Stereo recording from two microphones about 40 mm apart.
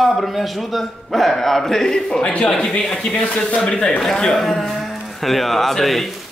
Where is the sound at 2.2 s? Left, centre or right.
Left.